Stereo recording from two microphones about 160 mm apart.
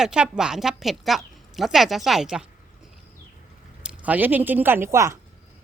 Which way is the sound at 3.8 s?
10° right (ahead or behind).